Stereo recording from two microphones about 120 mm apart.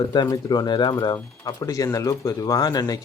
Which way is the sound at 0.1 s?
35° left (ahead or behind).